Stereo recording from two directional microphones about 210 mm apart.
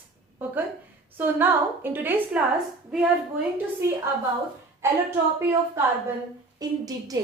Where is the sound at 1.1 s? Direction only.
10° right (ahead or behind).